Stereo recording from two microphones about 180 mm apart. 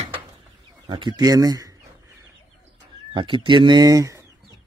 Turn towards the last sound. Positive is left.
turn(degrees=-20)  # may be behind; listen again after turning